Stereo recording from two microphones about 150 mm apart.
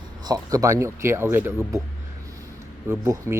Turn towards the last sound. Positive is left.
turn(degrees=-15)  # may be behind; listen again after turning